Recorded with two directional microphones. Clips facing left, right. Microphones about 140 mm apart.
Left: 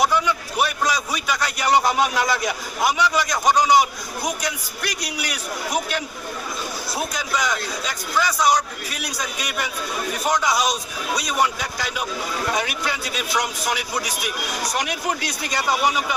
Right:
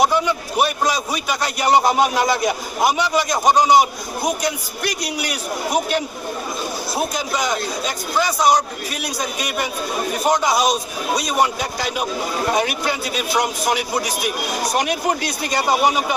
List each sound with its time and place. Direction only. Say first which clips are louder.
0.0 s a man's voice: right 3 dB; 25° right (ahead or behind)